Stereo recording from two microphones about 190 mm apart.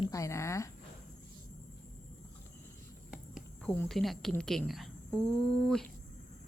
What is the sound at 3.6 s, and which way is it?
A woman's voice, 5° left (ahead or behind).